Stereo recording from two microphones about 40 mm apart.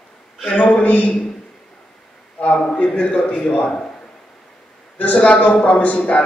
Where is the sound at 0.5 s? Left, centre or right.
Left.